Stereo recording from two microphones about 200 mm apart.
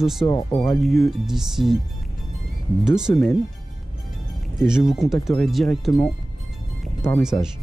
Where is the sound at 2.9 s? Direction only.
5° right (ahead or behind).